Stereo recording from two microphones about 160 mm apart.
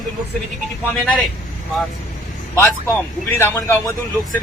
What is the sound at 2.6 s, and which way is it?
Speech, 15° left (ahead or behind).